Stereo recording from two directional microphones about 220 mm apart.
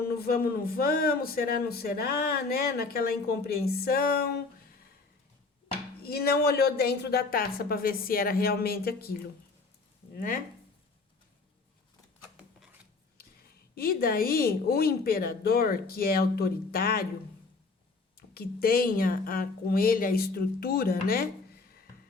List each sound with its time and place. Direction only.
0.0 s speech: 45° left (ahead or behind)
6.1 s speech: 45° left (ahead or behind)
13.1 s speech: 45° left (ahead or behind)
18.3 s speech: 45° left (ahead or behind)